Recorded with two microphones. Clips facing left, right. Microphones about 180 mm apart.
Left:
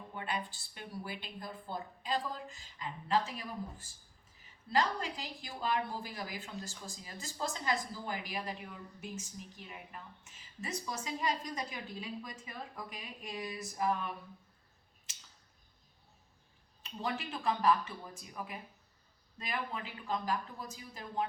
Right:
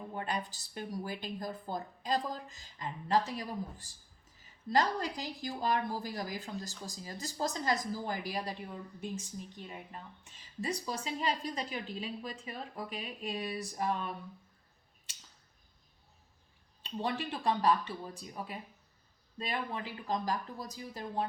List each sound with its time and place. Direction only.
0.1 s a woman's voice: 40° right (ahead or behind)
17.0 s a woman's voice: 35° right (ahead or behind)